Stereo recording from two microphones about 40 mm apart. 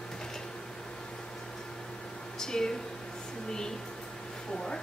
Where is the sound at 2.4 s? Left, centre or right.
Centre.